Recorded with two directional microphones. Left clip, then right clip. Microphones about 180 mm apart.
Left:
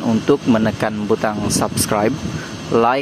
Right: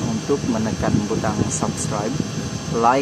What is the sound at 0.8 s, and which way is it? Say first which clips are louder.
Speech: left 4 dB; 40° left (ahead or behind).